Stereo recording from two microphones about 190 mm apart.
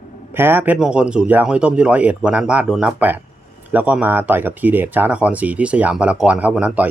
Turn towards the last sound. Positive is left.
turn(degrees=-5)  # may be behind; listen again after turning